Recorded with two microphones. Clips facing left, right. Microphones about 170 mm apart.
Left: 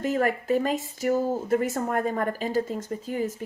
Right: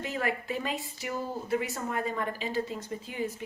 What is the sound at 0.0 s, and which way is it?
A woman's voice, 45° left (ahead or behind).